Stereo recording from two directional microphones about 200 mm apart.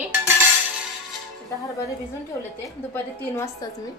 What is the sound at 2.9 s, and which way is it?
Speech, 15° left (ahead or behind).